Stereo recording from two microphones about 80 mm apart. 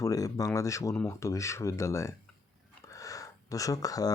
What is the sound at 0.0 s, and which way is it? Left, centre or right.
Speech, left.